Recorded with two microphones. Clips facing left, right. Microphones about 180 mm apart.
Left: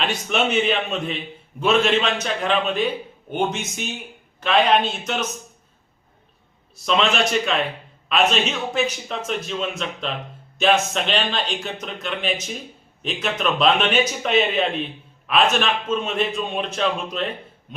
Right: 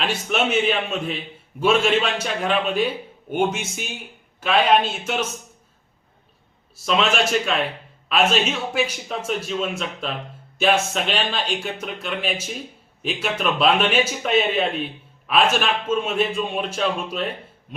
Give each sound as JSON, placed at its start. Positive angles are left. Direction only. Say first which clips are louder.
{"t": 0.0, "sound": "a man's voice", "louder": "even", "side_deg": -5}
{"t": 6.8, "sound": "a man's voice", "louder": "even", "side_deg": -5}